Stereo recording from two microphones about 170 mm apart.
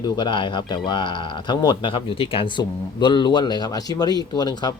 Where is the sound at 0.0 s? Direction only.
30° left (ahead or behind).